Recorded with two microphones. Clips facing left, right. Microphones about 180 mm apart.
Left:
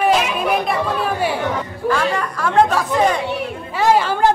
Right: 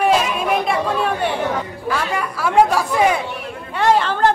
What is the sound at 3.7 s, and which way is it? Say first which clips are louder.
Speech: left 1 dB; 5° left (ahead or behind).